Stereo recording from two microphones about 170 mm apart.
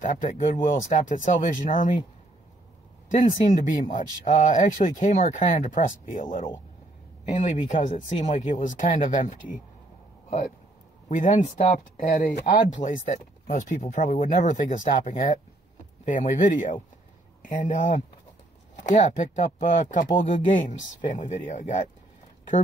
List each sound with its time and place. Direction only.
0.0 s speech: 50° left (ahead or behind)
3.1 s speech: 50° left (ahead or behind)
7.2 s speech: 45° left (ahead or behind)
11.1 s speech: 50° left (ahead or behind)